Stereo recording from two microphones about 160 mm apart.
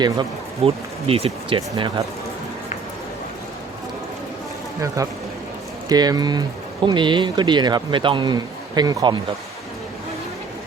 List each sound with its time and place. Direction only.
0.0 s speech: 30° right (ahead or behind)
5.0 s speech: 20° right (ahead or behind)